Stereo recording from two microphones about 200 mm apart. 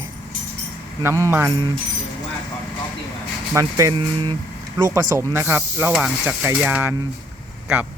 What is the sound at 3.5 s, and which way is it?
Speech, 15° right (ahead or behind).